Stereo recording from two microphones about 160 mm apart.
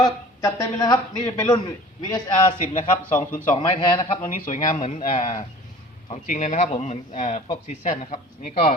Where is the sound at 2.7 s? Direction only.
50° left (ahead or behind).